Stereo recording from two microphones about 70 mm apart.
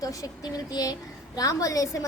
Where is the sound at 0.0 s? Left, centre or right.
Left.